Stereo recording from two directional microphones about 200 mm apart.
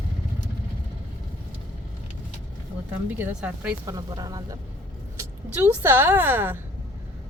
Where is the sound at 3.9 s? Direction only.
20° right (ahead or behind).